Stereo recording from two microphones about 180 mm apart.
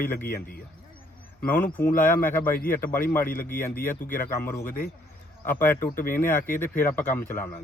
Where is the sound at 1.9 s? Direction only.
50° left (ahead or behind).